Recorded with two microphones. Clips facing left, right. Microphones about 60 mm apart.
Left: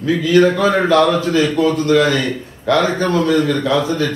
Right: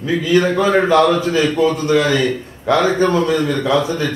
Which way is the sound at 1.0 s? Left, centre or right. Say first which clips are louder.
Even; centre.